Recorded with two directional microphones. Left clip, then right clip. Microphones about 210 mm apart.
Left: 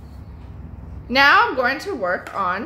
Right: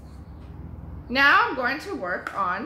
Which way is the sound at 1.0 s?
45° left (ahead or behind).